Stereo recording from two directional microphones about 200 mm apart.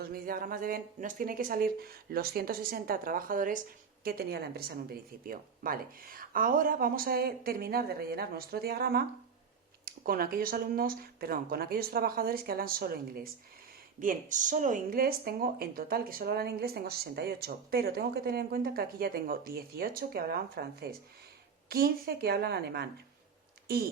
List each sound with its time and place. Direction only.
0.0 s speech: 45° right (ahead or behind)